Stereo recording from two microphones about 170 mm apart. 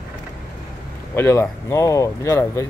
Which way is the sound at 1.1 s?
15° left (ahead or behind).